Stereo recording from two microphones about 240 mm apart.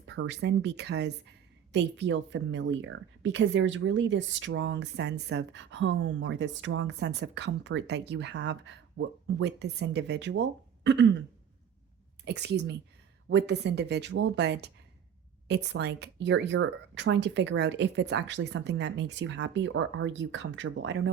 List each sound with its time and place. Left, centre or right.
0.1 s a woman's voice: right
10.8 s throat clearing: right
12.2 s a woman's voice: right